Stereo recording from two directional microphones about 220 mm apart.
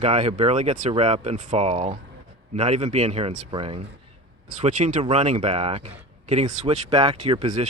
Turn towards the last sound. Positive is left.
turn(degrees=-30)  # may be behind; listen again after turning